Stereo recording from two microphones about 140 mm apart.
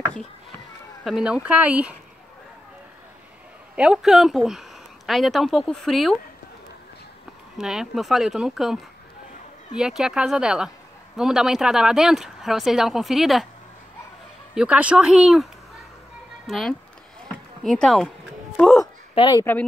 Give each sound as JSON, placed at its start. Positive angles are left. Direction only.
{"t": 1.0, "sound": "speech", "side_deg": -5}
{"t": 3.7, "sound": "speech", "side_deg": -5}
{"t": 7.5, "sound": "speech", "side_deg": -5}
{"t": 9.8, "sound": "speech", "side_deg": -5}
{"t": 14.5, "sound": "speech", "side_deg": -5}
{"t": 16.4, "sound": "speech", "side_deg": 0}
{"t": 19.1, "sound": "speech", "side_deg": 35}